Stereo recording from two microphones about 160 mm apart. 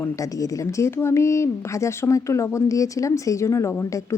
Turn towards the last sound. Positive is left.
turn(degrees=15)  # may be behind; listen again after turning